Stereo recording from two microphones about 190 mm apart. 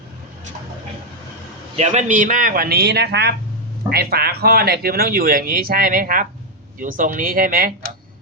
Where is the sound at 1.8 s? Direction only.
40° right (ahead or behind).